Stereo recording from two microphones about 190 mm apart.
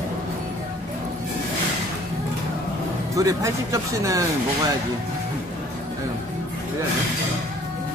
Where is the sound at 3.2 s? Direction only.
15° right (ahead or behind).